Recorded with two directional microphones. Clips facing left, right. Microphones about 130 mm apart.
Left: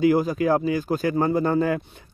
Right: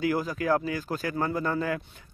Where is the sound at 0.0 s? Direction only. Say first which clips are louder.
Left 8 dB; 20° left (ahead or behind).